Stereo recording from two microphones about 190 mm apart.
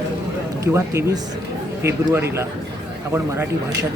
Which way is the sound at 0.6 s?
15° right (ahead or behind).